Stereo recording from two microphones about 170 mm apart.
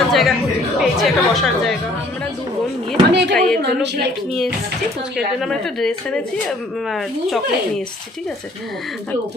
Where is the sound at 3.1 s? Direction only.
80° right.